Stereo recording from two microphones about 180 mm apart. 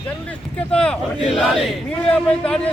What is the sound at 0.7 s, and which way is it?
A man's voice, 5° left (ahead or behind).